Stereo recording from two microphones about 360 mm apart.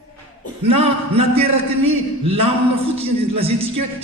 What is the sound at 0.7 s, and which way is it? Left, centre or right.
A man's voice, centre.